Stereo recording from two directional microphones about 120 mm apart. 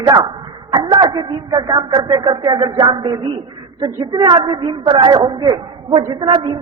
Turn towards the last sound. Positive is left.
turn(degrees=-40)  # may be behind; listen again after turning